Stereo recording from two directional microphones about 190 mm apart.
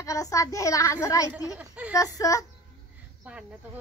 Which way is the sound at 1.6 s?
5° right (ahead or behind).